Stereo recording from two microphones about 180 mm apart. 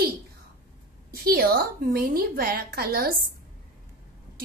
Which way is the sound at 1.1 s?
55° right (ahead or behind).